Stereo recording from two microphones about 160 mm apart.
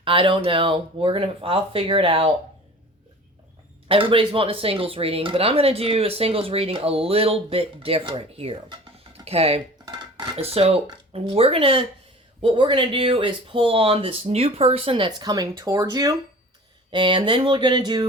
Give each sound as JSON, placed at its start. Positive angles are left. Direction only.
{"t": 0.0, "sound": "speech", "side_deg": -35}
{"t": 3.8, "sound": "speech", "side_deg": -35}